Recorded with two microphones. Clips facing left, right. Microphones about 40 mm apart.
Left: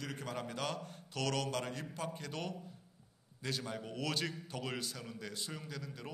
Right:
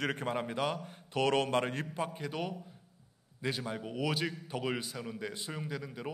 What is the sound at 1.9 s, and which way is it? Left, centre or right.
A man's voice, centre.